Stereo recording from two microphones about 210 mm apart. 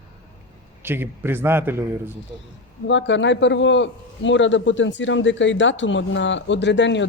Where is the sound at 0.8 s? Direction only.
10° right (ahead or behind).